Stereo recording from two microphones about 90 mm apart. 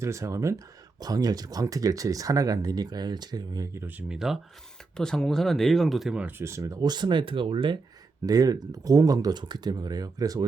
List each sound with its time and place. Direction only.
0.0 s speech: 35° right (ahead or behind)
3.8 s speech: 20° right (ahead or behind)
4.1 s speech: 5° right (ahead or behind)
4.9 s speech: 5° left (ahead or behind)
6.4 s speech: 30° right (ahead or behind); by 7.8 s 70° right (ahead or behind)
8.3 s speech: 45° right (ahead or behind)
9.4 s speech: 55° right (ahead or behind)